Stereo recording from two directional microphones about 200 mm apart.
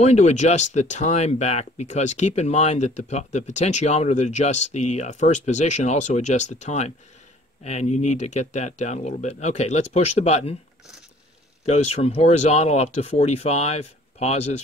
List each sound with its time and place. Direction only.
0.0 s speech: 35° left (ahead or behind)
11.6 s speech: 35° left (ahead or behind)